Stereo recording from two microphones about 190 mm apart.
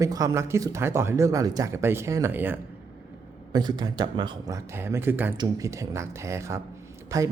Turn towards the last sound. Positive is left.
turn(degrees=-15)  # may be behind; listen again after turning